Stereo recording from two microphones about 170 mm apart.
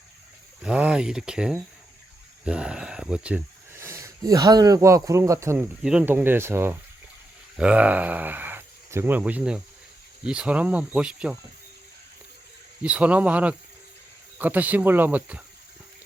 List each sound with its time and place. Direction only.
0.6 s speech: 5° right (ahead or behind)
5.8 s speech: 5° right (ahead or behind)
12.8 s speech: 5° right (ahead or behind)